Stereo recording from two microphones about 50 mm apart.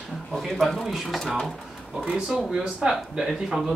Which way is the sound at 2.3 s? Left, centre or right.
Centre.